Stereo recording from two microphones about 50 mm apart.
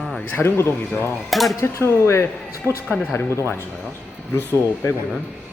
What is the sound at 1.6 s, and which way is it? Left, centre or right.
Speech, left.